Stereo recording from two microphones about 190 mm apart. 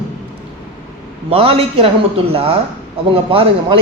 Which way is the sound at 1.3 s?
30° right (ahead or behind).